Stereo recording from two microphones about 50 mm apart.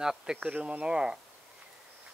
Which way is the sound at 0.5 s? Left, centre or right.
Right.